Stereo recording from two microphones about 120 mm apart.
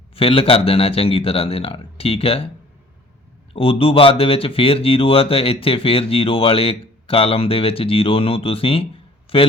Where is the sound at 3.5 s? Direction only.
50° left (ahead or behind).